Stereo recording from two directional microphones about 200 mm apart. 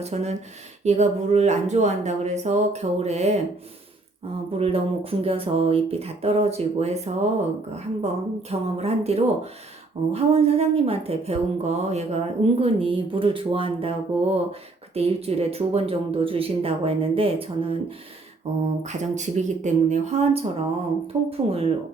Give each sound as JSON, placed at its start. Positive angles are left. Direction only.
{"t": 0.0, "sound": "speech", "side_deg": -35}
{"t": 4.5, "sound": "a woman's voice", "side_deg": -30}